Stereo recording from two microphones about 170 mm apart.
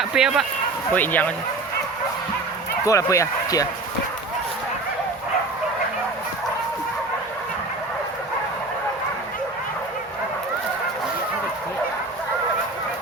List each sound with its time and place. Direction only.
0.0 s speech: 5° right (ahead or behind)
0.9 s speech: 10° left (ahead or behind)
2.8 s speech: 20° left (ahead or behind)